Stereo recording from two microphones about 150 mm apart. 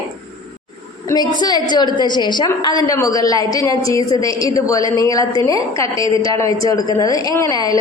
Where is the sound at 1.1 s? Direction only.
25° left (ahead or behind).